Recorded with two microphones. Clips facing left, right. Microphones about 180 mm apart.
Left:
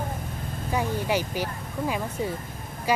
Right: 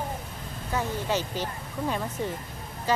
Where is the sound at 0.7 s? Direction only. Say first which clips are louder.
Left 2 dB; 15° left (ahead or behind).